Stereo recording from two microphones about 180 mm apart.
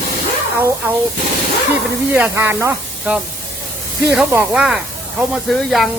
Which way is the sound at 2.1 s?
10° right (ahead or behind).